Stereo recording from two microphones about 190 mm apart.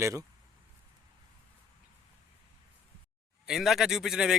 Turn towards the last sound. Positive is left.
turn(degrees=-5)  # may be behind; listen again after turning